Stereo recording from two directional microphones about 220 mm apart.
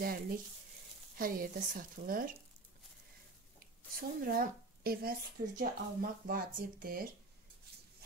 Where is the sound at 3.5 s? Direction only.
40° right (ahead or behind).